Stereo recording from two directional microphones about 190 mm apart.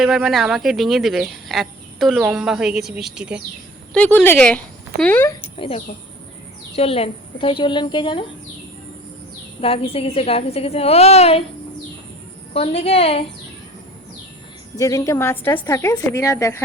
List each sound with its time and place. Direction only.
0.0 s speech: centre (ahead or behind)
3.9 s a woman's voice: 10° left (ahead or behind)
5.5 s a woman's voice: 30° left (ahead or behind)
9.6 s a woman's voice: 30° left (ahead or behind)
12.5 s a woman's voice: 30° left (ahead or behind)
14.8 s a woman's voice: 15° left (ahead or behind)